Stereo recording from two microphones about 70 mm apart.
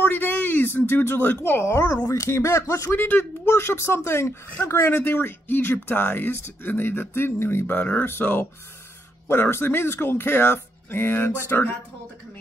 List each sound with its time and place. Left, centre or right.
0.0 s speech: left
3.0 s speech: left